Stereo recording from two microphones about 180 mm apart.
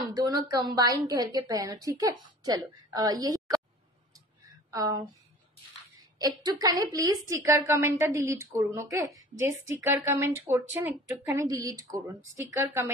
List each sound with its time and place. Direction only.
0.0 s a woman's voice: 20° right (ahead or behind)
4.6 s speech: 20° right (ahead or behind)
6.1 s a woman's voice: 20° right (ahead or behind)